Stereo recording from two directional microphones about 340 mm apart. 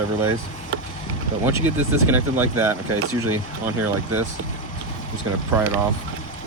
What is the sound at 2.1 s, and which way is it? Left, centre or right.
Speech, centre.